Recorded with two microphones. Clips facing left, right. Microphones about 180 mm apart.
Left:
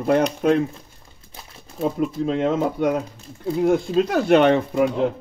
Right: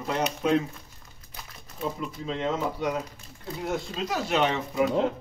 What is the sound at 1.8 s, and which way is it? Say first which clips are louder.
A man's voice: left 10 dB; 55° left (ahead or behind).